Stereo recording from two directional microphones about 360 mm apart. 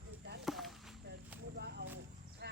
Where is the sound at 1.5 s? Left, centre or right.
Right.